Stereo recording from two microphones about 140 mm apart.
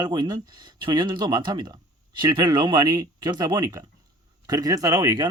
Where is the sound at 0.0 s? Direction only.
30° right (ahead or behind).